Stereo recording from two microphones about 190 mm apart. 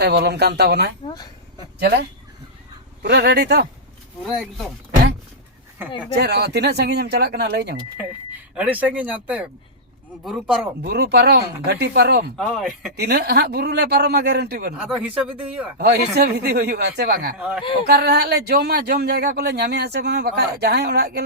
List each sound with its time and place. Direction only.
0.0 s speech: 60° right (ahead or behind)
1.0 s speech: 20° left (ahead or behind)
1.8 s speech: 55° right (ahead or behind)
6.1 s speech: 60° right (ahead or behind)
8.5 s speech: 10° right (ahead or behind)
10.8 s speech: 55° right (ahead or behind)
12.4 s speech: centre (ahead or behind)
13.0 s speech: 55° right (ahead or behind)
14.8 s speech: 5° right (ahead or behind)
15.8 s speech: 60° right (ahead or behind)
17.3 s speech: 5° right (ahead or behind)
17.8 s speech: 55° right (ahead or behind)